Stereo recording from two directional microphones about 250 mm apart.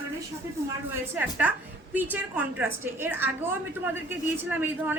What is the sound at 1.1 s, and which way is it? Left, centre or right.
A woman's voice, centre.